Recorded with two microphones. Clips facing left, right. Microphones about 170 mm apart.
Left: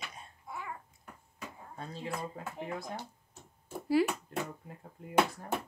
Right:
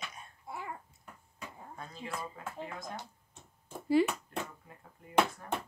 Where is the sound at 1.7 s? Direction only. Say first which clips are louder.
Left 3 dB; 30° left (ahead or behind).